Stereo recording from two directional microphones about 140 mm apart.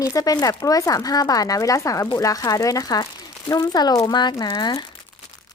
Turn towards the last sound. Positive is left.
turn(degrees=30)  # may be behind; listen again after turning